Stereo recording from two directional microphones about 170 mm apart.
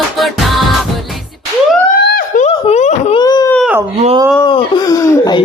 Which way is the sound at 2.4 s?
35° left (ahead or behind).